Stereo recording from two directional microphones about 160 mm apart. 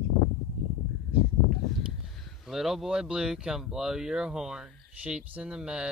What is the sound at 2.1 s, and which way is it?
Speech, centre (ahead or behind).